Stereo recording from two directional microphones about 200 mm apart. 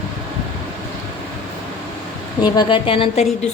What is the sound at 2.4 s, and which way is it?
Speech, 25° left (ahead or behind).